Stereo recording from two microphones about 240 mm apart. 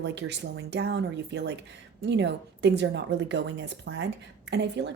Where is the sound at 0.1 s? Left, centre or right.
Right.